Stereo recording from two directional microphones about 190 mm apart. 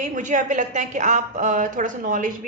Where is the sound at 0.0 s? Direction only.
40° right (ahead or behind).